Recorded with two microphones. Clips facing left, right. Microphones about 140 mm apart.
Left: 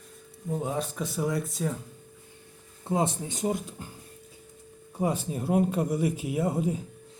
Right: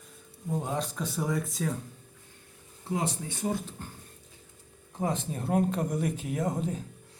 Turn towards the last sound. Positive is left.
turn(degrees=10)  # may be behind; listen again after turning